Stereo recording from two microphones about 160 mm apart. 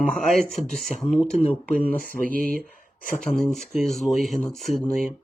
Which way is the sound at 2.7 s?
60° left (ahead or behind).